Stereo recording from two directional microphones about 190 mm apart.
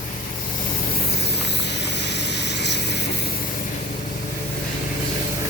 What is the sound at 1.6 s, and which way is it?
Vehicle, 65° left (ahead or behind).